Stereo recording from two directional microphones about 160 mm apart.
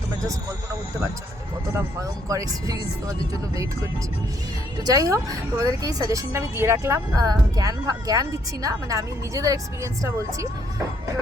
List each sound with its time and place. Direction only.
1.7 s a woman's voice: 20° right (ahead or behind)
4.8 s a woman's voice: 20° right (ahead or behind)